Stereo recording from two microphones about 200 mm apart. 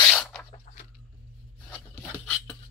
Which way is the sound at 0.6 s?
40° left (ahead or behind).